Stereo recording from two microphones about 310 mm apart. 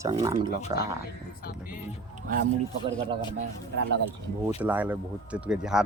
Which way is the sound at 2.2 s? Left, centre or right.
Right.